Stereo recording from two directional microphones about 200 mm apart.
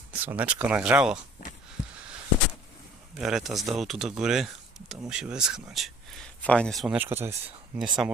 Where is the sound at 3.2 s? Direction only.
Centre (ahead or behind).